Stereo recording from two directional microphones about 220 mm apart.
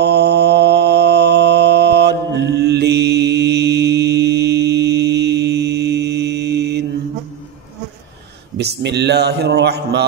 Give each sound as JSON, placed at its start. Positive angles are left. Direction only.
{"t": 0.0, "sound": "mantra", "side_deg": -50}
{"t": 8.5, "sound": "a man's voice", "side_deg": -50}